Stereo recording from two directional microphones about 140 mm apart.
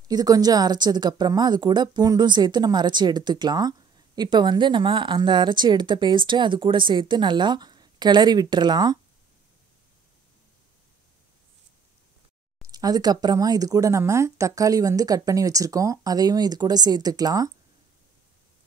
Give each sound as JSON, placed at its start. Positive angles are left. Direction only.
{"t": 0.1, "sound": "a woman's voice", "side_deg": -25}
{"t": 12.7, "sound": "speech", "side_deg": -30}